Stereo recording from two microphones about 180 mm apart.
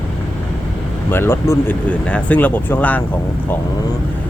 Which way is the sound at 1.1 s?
15° left (ahead or behind).